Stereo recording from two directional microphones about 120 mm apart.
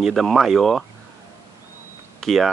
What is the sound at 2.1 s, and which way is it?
Speech, centre (ahead or behind).